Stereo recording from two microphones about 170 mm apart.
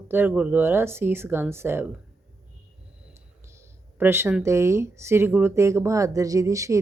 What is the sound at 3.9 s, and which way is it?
Speech, 15° right (ahead or behind).